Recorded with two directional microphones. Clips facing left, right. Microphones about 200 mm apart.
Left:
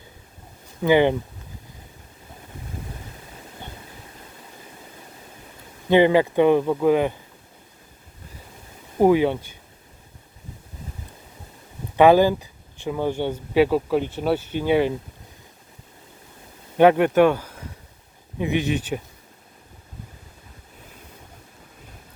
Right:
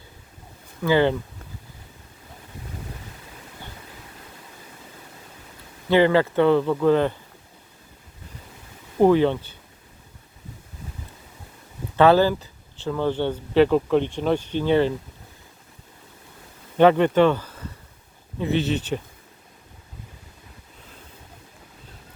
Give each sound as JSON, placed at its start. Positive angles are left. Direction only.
{"t": 0.8, "sound": "speech", "side_deg": 15}
{"t": 5.9, "sound": "speech", "side_deg": 15}
{"t": 9.0, "sound": "speech", "side_deg": 10}
{"t": 11.9, "sound": "speech", "side_deg": 15}
{"t": 16.7, "sound": "speech", "side_deg": 10}